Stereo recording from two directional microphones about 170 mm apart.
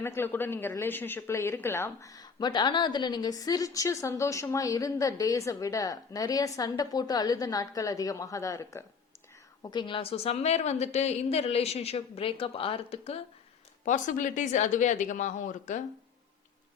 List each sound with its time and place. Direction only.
0.0 s a woman's voice: 15° left (ahead or behind); by 13.1 s 35° left (ahead or behind)
13.8 s speech: 50° left (ahead or behind)